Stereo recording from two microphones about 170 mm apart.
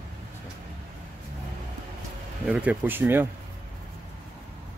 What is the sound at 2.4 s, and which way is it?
Speech, 5° right (ahead or behind).